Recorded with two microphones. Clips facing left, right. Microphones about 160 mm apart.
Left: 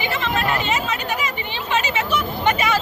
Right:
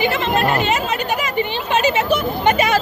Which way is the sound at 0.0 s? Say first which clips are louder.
Right 5 dB; 60° right (ahead or behind).